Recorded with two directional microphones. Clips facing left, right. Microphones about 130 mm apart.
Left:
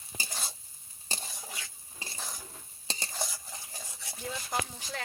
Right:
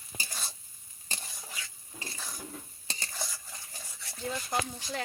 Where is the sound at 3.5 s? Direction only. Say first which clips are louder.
Left 2 dB; 15° left (ahead or behind).